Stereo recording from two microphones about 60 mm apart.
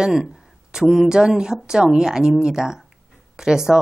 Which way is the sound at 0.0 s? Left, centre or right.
Centre.